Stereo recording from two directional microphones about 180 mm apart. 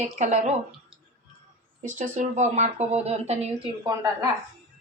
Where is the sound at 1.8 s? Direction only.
45° right (ahead or behind).